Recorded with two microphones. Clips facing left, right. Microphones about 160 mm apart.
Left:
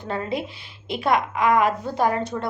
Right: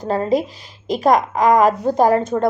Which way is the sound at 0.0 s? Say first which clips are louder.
Right 9 dB; 40° right (ahead or behind).